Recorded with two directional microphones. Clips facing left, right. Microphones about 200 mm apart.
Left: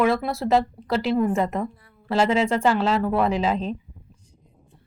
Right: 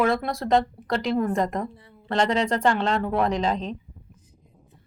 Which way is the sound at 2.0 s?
5° left (ahead or behind).